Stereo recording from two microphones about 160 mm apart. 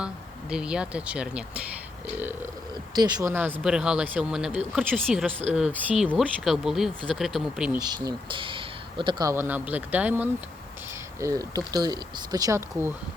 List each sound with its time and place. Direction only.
0.5 s speech: 5° right (ahead or behind)
2.9 s speech: 25° right (ahead or behind)
3.6 s speech: 5° right (ahead or behind)
7.8 s speech: 25° right (ahead or behind)
9.3 s speech: 15° right (ahead or behind)